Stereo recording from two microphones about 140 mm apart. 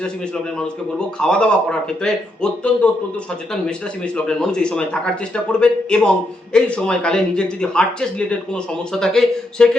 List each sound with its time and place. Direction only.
0.9 s speech: 5° left (ahead or behind)
4.0 s speech: 5° left (ahead or behind)